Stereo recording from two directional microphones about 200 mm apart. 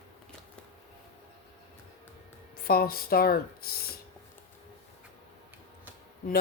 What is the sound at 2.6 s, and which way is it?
Speech, 50° left (ahead or behind).